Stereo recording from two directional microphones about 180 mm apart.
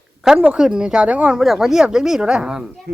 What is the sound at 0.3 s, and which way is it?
Speech, 5° right (ahead or behind).